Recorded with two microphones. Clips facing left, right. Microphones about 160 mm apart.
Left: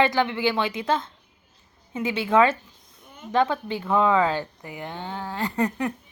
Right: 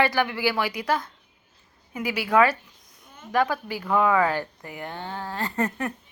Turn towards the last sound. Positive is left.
turn(degrees=15)  # may be behind; listen again after turning